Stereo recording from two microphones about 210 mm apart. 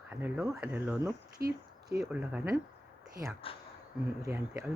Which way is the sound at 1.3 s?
50° right (ahead or behind).